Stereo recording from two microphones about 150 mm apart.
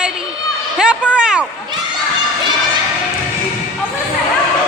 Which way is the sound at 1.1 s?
5° right (ahead or behind).